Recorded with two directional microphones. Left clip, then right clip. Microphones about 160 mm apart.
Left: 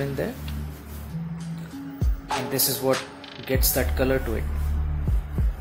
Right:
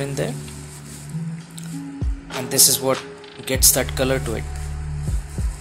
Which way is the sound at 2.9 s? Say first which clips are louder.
Right 2 dB; 20° right (ahead or behind).